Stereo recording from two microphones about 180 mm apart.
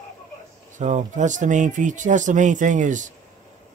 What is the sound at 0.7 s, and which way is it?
Speech, 45° right (ahead or behind).